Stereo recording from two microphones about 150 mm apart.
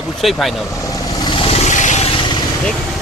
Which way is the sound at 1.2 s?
35° left (ahead or behind).